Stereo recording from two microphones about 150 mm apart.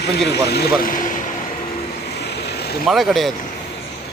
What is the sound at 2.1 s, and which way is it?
Vehicle, 90° left.